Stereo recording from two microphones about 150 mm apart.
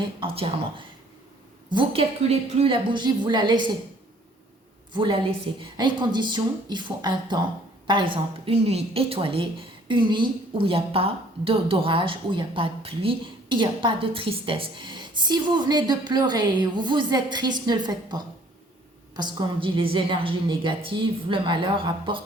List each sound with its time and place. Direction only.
0.0 s a woman's voice: 35° right (ahead or behind)
5.7 s a woman's voice: 30° right (ahead or behind)